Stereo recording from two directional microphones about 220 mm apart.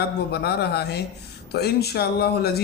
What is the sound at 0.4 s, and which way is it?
Speech, 45° left (ahead or behind).